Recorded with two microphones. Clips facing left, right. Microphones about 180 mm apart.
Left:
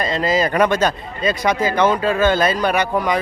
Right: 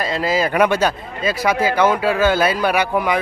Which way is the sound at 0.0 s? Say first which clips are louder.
Left 1 dB; 5° right (ahead or behind).